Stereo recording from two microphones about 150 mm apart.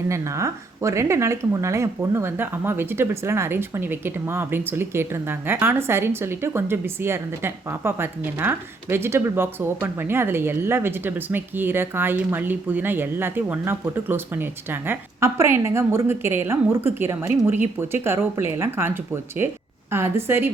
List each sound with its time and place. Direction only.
0.1 s speech: 20° right (ahead or behind)